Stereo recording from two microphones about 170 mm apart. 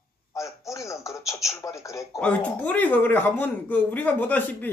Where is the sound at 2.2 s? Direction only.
10° left (ahead or behind).